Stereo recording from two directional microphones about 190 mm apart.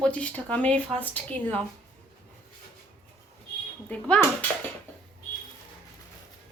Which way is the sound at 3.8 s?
5° left (ahead or behind).